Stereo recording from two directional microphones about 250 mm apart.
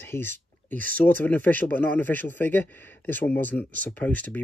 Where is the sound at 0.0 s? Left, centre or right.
Centre.